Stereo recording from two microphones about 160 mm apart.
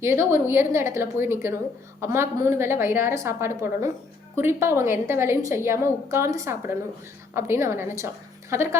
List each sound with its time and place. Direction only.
0.0 s a woman's voice: 15° right (ahead or behind)